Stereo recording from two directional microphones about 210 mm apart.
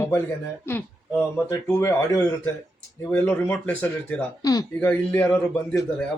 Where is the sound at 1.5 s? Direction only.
10° left (ahead or behind).